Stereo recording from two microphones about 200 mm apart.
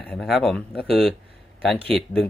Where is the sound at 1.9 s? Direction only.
5° left (ahead or behind).